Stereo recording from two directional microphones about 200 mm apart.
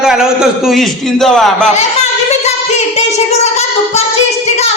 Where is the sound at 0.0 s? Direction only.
5° right (ahead or behind).